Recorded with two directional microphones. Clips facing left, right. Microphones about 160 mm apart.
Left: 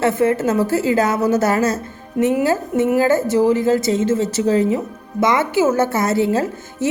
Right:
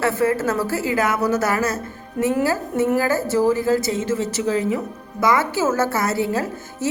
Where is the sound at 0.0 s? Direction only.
20° left (ahead or behind).